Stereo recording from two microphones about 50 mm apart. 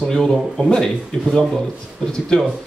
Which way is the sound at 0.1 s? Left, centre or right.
Centre.